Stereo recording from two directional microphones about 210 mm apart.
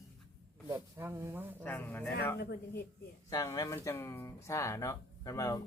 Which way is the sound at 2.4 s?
50° left (ahead or behind).